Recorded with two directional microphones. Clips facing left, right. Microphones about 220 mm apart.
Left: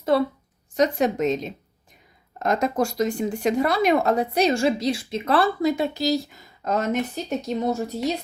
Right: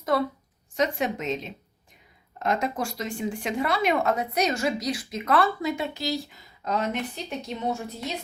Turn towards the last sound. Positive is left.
turn(degrees=40)  # may be behind; listen again after turning